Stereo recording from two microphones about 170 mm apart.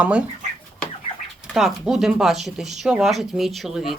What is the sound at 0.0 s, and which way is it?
Speech, 5° right (ahead or behind).